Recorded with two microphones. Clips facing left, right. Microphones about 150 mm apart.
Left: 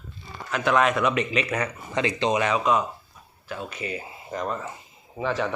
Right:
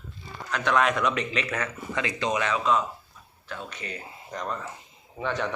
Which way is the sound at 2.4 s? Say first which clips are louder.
Left 2 dB; 15° left (ahead or behind).